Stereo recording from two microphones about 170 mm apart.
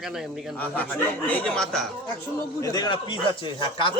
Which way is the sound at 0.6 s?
10° left (ahead or behind).